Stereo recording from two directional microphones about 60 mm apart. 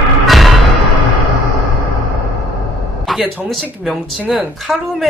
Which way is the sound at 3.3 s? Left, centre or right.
Centre.